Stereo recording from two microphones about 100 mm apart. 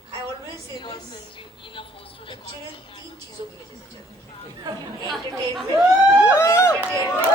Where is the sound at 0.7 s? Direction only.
45° left (ahead or behind).